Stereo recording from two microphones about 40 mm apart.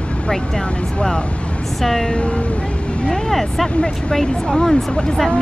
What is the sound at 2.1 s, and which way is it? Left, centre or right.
Speech, left.